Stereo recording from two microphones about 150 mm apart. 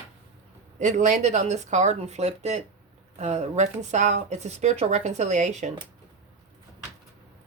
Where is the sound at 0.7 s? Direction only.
55° right (ahead or behind).